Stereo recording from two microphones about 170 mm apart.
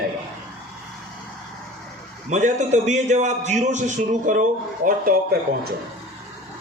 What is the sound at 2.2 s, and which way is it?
A man's voice, 45° right (ahead or behind).